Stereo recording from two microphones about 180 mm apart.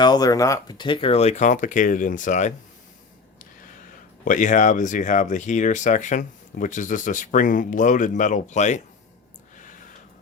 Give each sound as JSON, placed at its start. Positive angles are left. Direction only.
{"t": 0.0, "sound": "speech", "side_deg": 20}
{"t": 4.3, "sound": "speech", "side_deg": 45}